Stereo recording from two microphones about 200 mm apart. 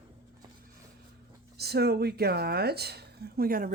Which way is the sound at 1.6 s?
55° right (ahead or behind).